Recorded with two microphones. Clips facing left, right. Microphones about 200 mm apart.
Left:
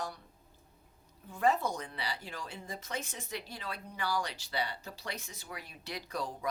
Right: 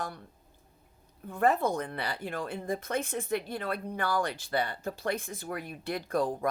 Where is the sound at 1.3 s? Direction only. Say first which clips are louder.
Right 4 dB; 55° right (ahead or behind).